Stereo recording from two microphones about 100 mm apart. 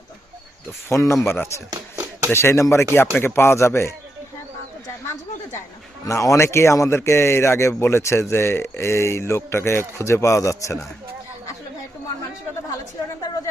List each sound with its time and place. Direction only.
0.9 s speech: 25° left (ahead or behind)
1.7 s a sound: 40° right (ahead or behind)
2.3 s speech: 25° left (ahead or behind)
6.1 s speech: 30° left (ahead or behind)